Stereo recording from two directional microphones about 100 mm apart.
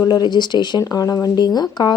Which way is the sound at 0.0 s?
45° left (ahead or behind).